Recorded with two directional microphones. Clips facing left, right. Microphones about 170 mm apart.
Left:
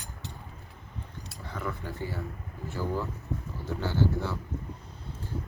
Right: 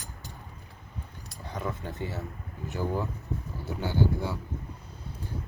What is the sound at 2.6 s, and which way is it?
Cutlery, 20° right (ahead or behind).